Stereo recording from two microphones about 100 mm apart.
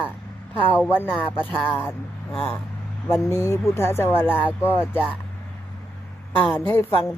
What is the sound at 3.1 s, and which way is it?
Speech, 30° left (ahead or behind).